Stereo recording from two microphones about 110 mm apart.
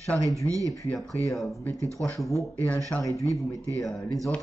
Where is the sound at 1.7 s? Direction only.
30° right (ahead or behind).